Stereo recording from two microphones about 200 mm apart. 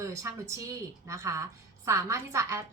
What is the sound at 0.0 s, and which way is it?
A woman's voice, 15° right (ahead or behind).